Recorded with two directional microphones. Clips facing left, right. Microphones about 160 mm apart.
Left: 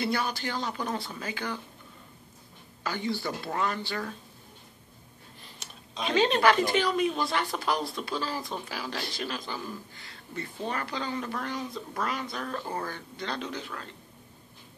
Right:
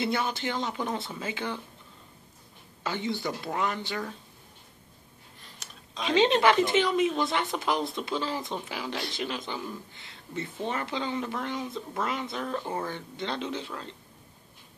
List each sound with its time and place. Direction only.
0.0 s speech: 20° right (ahead or behind)
2.8 s speech: 20° right (ahead or behind)
5.6 s a sound: centre (ahead or behind)
6.1 s speech: 20° right (ahead or behind)